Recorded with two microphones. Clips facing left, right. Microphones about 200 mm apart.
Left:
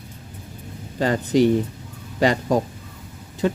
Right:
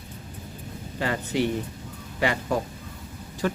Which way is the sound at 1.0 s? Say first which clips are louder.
Left 8 dB; 35° left (ahead or behind).